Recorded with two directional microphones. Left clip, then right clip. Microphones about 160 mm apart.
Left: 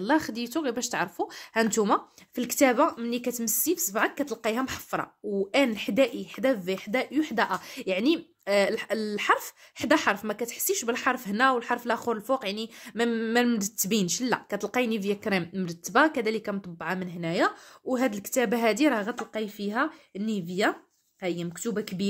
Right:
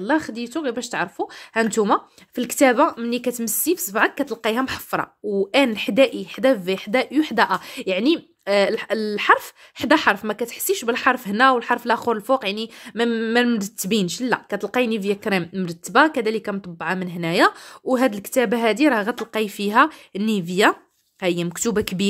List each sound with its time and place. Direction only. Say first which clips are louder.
0.0 s a woman's voice: right 4 dB; 10° right (ahead or behind); by 19.4 s 40° right (ahead or behind)
19.4 s speech: right 13 dB; 55° right (ahead or behind)